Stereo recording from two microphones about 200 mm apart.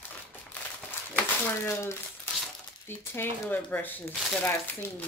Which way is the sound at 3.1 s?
10° left (ahead or behind).